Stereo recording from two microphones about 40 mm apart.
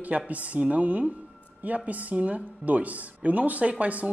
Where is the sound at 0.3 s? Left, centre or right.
Right.